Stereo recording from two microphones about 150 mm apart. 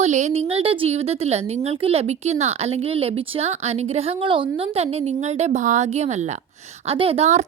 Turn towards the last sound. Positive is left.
turn(degrees=-45)  # may be behind; listen again after turning